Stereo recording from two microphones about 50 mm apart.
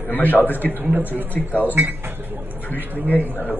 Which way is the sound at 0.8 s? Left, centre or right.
Right.